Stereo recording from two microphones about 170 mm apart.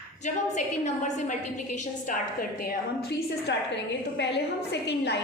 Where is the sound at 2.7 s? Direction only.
80° left.